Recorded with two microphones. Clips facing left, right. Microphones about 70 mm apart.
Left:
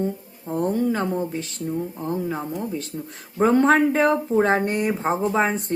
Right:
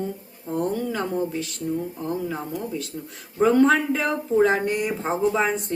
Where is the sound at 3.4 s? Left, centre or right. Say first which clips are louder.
Left 1 dB; left.